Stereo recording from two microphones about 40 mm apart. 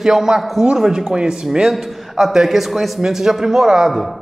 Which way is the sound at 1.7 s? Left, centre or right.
Centre.